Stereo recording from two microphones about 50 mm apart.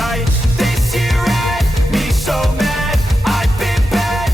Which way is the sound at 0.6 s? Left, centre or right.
Centre.